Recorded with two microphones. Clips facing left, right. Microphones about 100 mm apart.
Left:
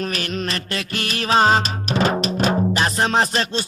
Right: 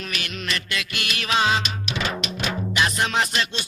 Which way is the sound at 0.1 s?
35° left (ahead or behind).